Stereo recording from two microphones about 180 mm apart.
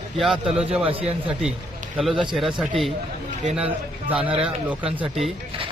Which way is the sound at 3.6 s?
10° right (ahead or behind).